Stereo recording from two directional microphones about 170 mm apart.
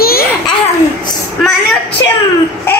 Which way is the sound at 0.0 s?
60° left (ahead or behind).